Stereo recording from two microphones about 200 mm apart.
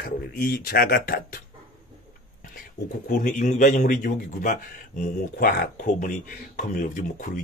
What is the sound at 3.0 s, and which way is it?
A man's voice, 40° left (ahead or behind).